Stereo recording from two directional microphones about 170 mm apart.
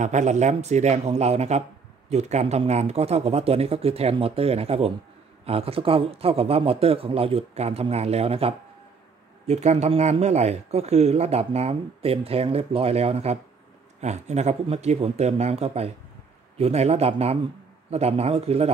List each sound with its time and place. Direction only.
0.0 s speech: 45° right (ahead or behind)